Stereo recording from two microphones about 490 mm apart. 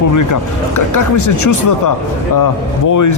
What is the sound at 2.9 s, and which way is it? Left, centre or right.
Speech, left.